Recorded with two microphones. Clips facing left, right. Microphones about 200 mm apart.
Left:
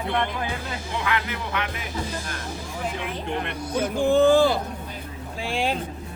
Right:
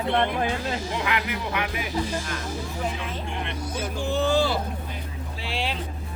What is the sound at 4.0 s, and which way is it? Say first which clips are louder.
Speech: left 6 dB; 50° left (ahead or behind).